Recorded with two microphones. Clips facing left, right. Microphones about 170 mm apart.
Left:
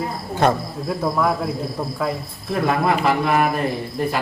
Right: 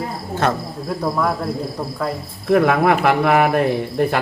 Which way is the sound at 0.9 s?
Centre (ahead or behind).